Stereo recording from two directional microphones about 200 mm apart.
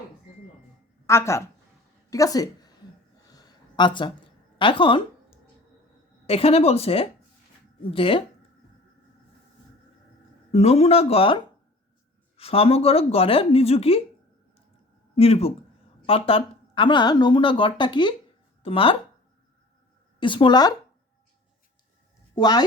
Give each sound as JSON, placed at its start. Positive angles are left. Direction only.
{"t": 1.0, "sound": "a woman's voice", "side_deg": 15}
{"t": 3.2, "sound": "a sound", "side_deg": 20}
{"t": 4.5, "sound": "speech", "side_deg": 25}
{"t": 6.2, "sound": "speech", "side_deg": 30}
{"t": 10.5, "sound": "speech", "side_deg": 30}
{"t": 12.4, "sound": "speech", "side_deg": 30}
{"t": 15.1, "sound": "speech", "side_deg": 30}
{"t": 20.1, "sound": "speech", "side_deg": 25}
{"t": 22.4, "sound": "speech", "side_deg": 20}